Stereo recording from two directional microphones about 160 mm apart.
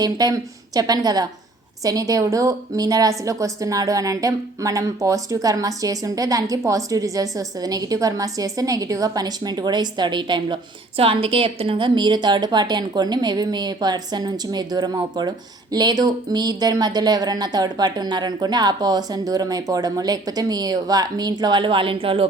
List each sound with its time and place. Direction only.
0.0 s a woman's voice: 25° right (ahead or behind)